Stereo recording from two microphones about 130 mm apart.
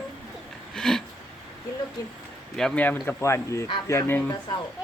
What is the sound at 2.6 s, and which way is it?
Speech, 10° left (ahead or behind).